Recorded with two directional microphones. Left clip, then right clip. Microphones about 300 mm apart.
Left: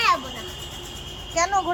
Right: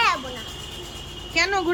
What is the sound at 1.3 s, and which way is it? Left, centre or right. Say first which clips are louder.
Speech: even; centre.